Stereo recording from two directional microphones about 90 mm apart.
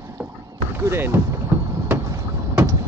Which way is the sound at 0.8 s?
25° right (ahead or behind).